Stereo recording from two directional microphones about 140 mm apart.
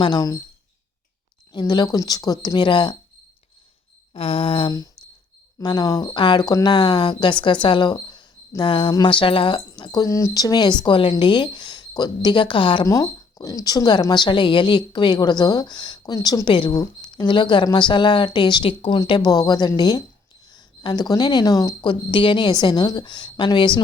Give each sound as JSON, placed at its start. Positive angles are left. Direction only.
{"t": 0.0, "sound": "speech", "side_deg": 30}
{"t": 1.5, "sound": "speech", "side_deg": 30}
{"t": 4.1, "sound": "speech", "side_deg": 45}